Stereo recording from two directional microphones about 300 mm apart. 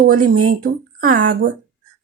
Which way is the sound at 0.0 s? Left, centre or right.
Right.